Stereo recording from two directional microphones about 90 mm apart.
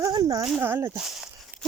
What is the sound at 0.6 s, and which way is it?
Speech, 25° right (ahead or behind).